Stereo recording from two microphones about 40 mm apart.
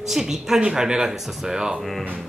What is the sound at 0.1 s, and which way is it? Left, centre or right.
Speech, centre.